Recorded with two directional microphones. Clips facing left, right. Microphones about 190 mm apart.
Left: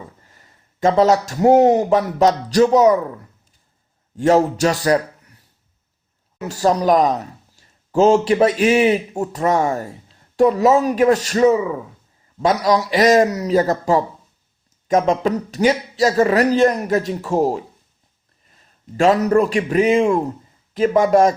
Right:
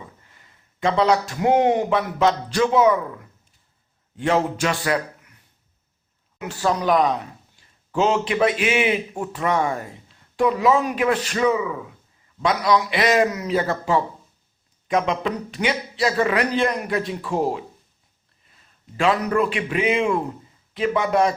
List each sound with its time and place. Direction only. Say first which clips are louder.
0.3 s speech: left 3 dB; 40° left (ahead or behind)
4.2 s speech: left 6 dB; 40° left (ahead or behind)
6.4 s a man's voice: left 5 dB; 40° left (ahead or behind)
18.9 s speech: left 6 dB; 40° left (ahead or behind)